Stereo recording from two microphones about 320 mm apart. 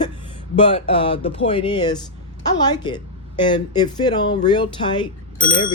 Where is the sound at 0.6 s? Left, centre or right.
Centre.